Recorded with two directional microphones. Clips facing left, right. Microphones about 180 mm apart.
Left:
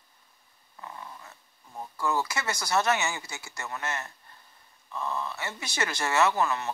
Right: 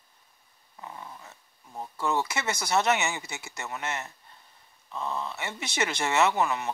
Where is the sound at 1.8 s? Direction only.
20° right (ahead or behind).